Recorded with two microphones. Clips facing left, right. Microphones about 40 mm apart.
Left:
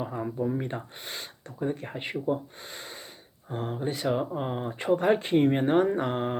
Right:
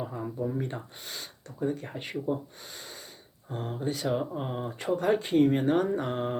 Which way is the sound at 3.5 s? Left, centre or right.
Centre.